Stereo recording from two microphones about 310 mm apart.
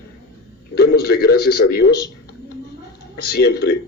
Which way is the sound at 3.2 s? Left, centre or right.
Left.